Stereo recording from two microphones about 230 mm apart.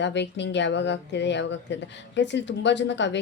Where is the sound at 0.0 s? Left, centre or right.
Left.